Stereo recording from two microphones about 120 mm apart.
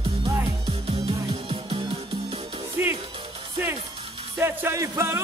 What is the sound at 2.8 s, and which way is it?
Music, 20° right (ahead or behind).